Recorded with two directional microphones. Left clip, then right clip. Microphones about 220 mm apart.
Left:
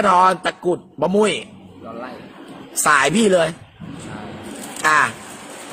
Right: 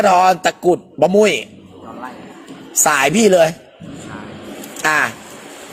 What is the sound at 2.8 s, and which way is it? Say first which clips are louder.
Speech: right 2 dB; 10° right (ahead or behind).